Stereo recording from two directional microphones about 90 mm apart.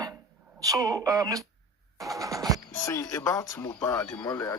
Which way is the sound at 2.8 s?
35° left (ahead or behind).